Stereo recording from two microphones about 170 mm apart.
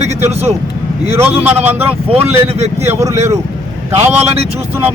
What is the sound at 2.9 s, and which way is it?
Speech, 15° right (ahead or behind).